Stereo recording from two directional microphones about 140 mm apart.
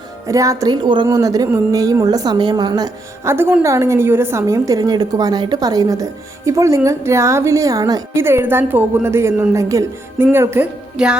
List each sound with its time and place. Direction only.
0.3 s a woman's voice: 25° right (ahead or behind)
3.3 s a woman's voice: 15° right (ahead or behind)
10.9 s music: 5° right (ahead or behind)